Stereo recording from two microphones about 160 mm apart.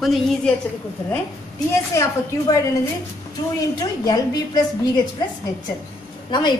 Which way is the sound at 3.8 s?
25° left (ahead or behind).